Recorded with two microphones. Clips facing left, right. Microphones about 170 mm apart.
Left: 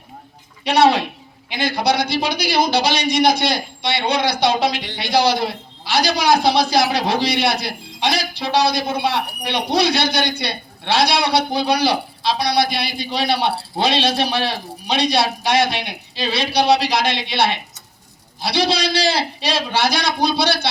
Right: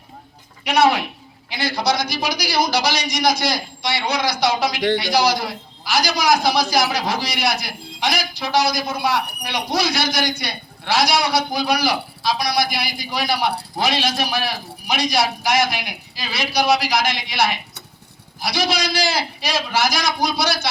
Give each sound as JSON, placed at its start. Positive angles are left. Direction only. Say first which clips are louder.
{"t": 0.6, "sound": "speech", "louder": "left 2 dB", "side_deg": 30}
{"t": 1.8, "sound": "speech", "louder": "left 2 dB", "side_deg": 60}
{"t": 2.0, "sound": "a man's voice", "louder": "left 3 dB", "side_deg": 25}
{"t": 20.4, "sound": "speech", "louder": "left 3 dB", "side_deg": 65}